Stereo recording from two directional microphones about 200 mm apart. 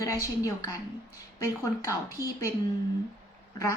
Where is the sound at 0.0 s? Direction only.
15° left (ahead or behind).